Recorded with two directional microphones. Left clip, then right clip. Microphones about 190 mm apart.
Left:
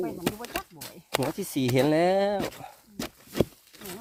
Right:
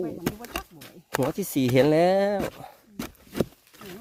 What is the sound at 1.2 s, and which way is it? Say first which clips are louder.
Speech: right 6 dB; 35° right (ahead or behind).